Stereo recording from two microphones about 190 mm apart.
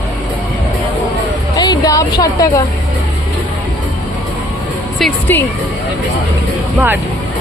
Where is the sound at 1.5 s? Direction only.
20° left (ahead or behind).